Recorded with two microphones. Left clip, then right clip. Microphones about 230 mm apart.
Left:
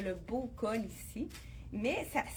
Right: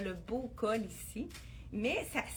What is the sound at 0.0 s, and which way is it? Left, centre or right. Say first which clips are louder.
Speech: left 1 dB; right.